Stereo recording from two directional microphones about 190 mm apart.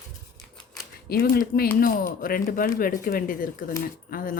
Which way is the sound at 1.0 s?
55° left (ahead or behind).